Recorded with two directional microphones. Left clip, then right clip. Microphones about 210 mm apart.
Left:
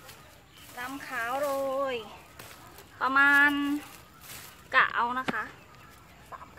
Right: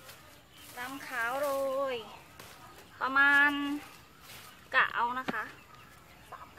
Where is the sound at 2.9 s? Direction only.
25° left (ahead or behind).